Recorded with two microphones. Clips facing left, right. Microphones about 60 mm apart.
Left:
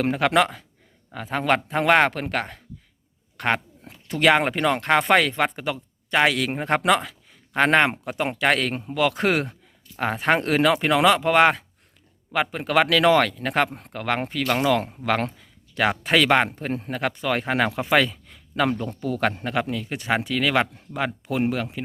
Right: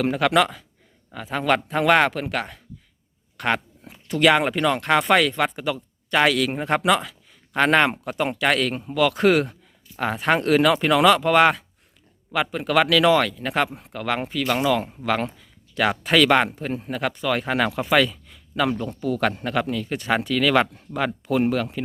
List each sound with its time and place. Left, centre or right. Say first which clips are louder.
0.0 s speech: right 1 dB; left
15.7 s speech: right 1 dB; left
18.3 s a sound: even; left
19.0 s speech: right 1 dB; left; by 21.8 s centre